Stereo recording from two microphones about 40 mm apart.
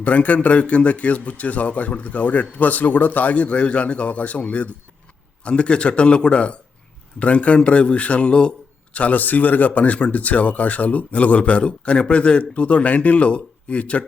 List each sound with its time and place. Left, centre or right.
0.0 s a man's voice: left